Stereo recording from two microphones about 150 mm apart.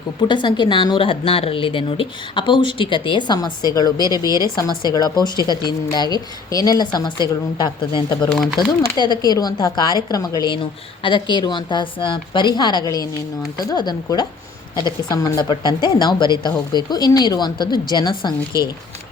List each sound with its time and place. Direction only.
0.2 s a woman's voice: 30° left (ahead or behind)
3.9 s speech: 25° right (ahead or behind)
4.5 s speech: 30° left (ahead or behind)